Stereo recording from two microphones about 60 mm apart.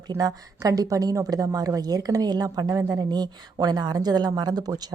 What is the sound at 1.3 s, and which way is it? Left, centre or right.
A woman's voice, right.